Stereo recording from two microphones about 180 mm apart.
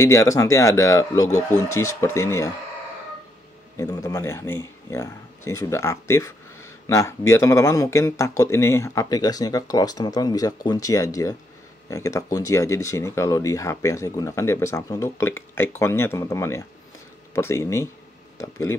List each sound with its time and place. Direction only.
0.0 s speech: 15° left (ahead or behind)
3.7 s speech: 20° left (ahead or behind)